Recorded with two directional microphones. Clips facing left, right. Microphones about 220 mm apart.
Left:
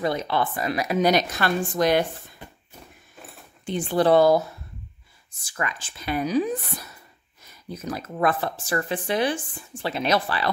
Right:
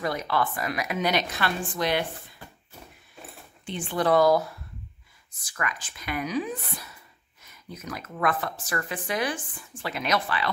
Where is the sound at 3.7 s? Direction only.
40° left (ahead or behind).